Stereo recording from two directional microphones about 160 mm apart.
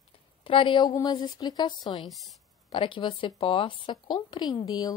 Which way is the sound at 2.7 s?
30° left (ahead or behind).